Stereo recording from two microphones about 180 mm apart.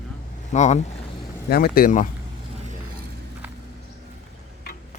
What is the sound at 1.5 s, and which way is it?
Speech, 60° left (ahead or behind).